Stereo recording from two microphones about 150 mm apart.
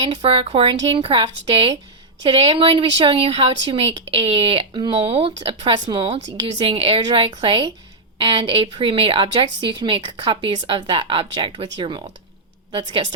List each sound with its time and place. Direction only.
0.1 s a woman's voice: 40° right (ahead or behind)
6.1 s a woman's voice: 45° right (ahead or behind)